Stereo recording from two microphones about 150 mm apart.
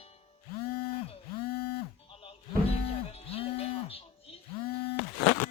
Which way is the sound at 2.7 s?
45° left (ahead or behind).